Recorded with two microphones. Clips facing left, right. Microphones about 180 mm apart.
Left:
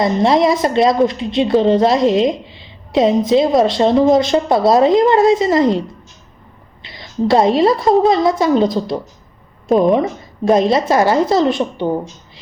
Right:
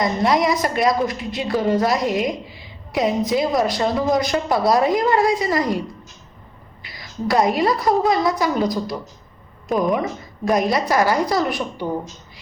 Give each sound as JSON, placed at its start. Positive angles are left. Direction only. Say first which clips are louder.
{"t": 0.0, "sound": "a woman's voice", "louder": "left 5 dB", "side_deg": 25}
{"t": 6.8, "sound": "a woman's voice", "louder": "left 7 dB", "side_deg": 25}